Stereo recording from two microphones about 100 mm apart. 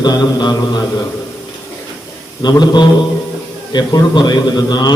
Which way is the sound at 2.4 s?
45° left (ahead or behind).